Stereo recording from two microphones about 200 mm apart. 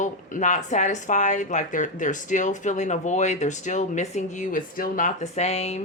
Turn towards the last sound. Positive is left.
turn(degrees=30)  # may be behind; listen again after turning